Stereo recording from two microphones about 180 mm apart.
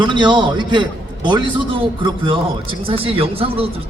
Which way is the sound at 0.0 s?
25° right (ahead or behind).